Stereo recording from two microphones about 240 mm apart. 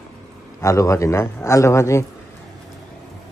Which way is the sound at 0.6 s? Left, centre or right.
Centre.